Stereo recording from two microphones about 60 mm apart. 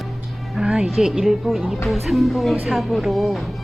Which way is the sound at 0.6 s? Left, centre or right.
Centre.